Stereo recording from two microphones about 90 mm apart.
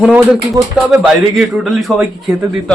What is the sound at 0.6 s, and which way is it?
Speech, 40° right (ahead or behind).